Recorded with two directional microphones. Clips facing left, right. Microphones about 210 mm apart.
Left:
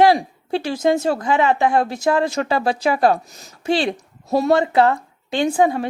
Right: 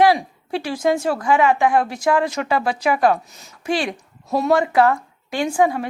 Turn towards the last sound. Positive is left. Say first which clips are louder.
# left 1 dB
turn(degrees=30)  # may be behind; listen again after turning